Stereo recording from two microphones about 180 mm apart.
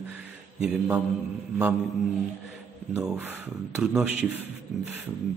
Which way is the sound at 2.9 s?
10° right (ahead or behind).